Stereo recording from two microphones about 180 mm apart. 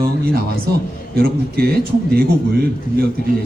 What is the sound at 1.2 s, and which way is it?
Speech, 60° right (ahead or behind).